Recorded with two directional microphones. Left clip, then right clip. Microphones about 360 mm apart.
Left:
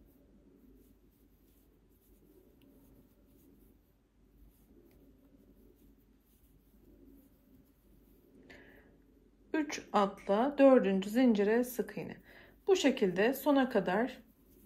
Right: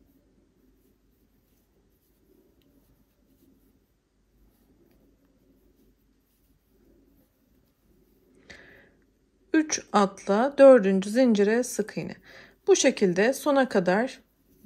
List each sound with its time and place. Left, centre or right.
9.5 s speech: centre